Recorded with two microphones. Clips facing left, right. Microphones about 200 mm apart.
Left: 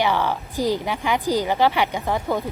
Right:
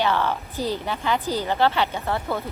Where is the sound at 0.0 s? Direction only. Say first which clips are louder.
Left 1 dB; 15° left (ahead or behind).